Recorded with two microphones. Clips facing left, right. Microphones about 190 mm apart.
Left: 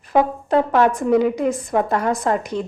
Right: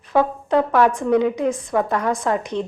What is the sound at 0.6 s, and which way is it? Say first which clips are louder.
Speech: even; 25° left (ahead or behind).